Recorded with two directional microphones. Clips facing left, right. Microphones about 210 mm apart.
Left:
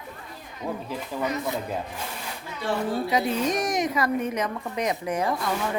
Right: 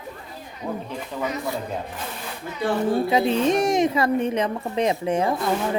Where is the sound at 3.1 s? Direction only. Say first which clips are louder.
Right 4 dB; 25° right (ahead or behind).